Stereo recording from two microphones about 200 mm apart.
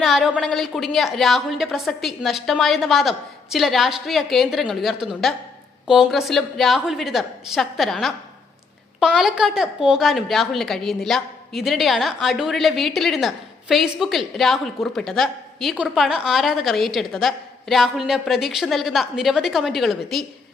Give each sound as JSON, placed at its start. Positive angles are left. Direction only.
{"t": 0.0, "sound": "a woman's voice", "side_deg": 0}